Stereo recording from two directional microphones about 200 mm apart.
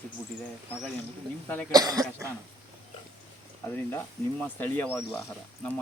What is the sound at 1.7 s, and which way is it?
Speech, 20° right (ahead or behind).